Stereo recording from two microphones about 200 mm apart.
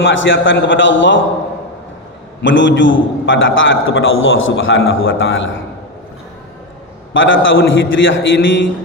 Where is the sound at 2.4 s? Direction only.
65° left (ahead or behind).